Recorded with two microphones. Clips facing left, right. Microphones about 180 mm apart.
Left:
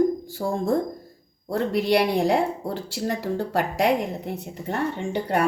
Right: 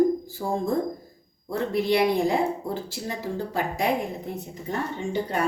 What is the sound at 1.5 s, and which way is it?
Speech, 70° left (ahead or behind).